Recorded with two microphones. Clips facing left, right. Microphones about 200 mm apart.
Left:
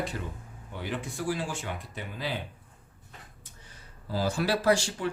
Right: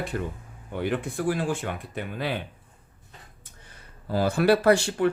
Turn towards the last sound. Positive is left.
turn(degrees=-60)  # may be behind; listen again after turning